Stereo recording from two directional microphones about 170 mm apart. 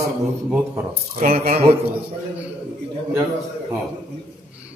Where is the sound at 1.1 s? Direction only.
60° right (ahead or behind).